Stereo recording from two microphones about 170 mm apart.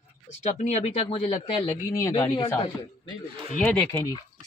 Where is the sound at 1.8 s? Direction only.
20° left (ahead or behind).